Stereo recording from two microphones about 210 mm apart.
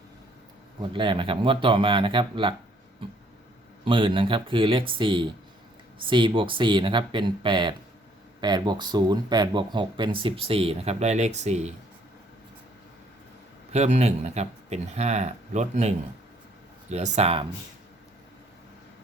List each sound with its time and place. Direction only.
0.8 s speech: 25° right (ahead or behind)
3.8 s speech: 25° right (ahead or behind)
13.7 s speech: 30° right (ahead or behind)